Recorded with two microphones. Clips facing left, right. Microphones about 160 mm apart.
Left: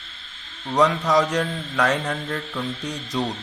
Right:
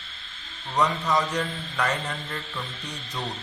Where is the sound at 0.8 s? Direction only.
90° left.